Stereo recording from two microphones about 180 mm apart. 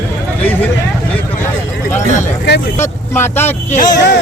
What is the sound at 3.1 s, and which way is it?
Speech, 10° left (ahead or behind).